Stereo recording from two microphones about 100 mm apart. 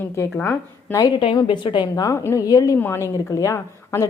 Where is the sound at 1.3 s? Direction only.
55° left (ahead or behind).